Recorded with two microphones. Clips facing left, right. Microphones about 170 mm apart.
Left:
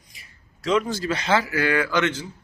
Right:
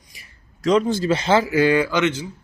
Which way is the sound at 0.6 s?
40° right (ahead or behind).